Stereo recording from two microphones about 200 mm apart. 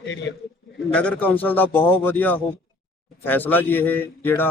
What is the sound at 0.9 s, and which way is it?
Speech, 5° left (ahead or behind).